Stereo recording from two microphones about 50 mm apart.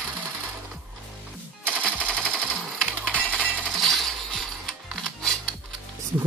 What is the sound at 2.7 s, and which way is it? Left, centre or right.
Coin, centre.